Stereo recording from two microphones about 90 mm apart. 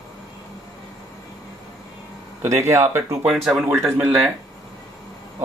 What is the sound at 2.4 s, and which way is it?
Speech, 30° right (ahead or behind).